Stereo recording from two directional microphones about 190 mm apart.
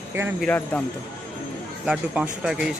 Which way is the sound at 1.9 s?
5° right (ahead or behind).